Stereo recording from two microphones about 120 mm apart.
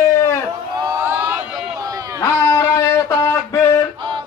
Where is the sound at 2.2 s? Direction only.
30° left (ahead or behind).